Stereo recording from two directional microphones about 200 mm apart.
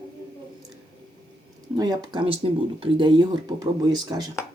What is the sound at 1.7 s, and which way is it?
Speech, 20° right (ahead or behind).